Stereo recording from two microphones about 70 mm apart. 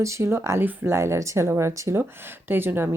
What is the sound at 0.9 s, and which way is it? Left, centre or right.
Speech, right.